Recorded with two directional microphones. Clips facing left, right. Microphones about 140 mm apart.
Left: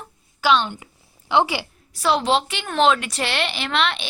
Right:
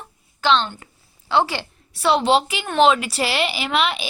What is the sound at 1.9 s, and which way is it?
A woman's voice, centre (ahead or behind).